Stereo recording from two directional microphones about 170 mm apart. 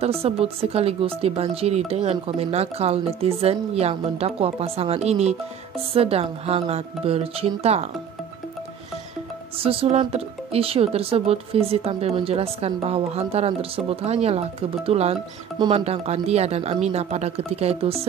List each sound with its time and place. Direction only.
0.0 s speech: 35° right (ahead or behind)
9.6 s speech: 35° right (ahead or behind)